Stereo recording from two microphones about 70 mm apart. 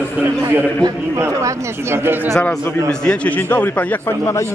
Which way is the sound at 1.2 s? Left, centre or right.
Right.